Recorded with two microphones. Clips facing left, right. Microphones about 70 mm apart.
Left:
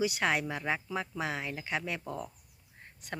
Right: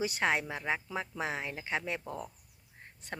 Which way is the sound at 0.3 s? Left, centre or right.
Right.